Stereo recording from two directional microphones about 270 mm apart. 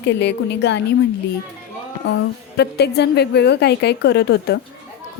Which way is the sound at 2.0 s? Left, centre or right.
Left.